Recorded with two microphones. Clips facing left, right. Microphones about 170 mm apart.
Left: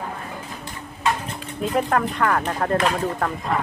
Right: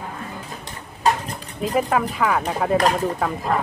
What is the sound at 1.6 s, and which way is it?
Speech, 5° right (ahead or behind).